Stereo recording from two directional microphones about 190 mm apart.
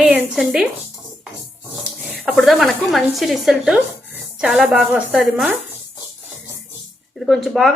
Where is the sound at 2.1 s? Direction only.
Centre (ahead or behind).